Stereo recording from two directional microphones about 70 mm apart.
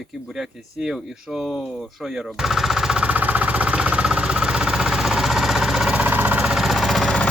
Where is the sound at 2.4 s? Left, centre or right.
Centre; by 6.4 s right.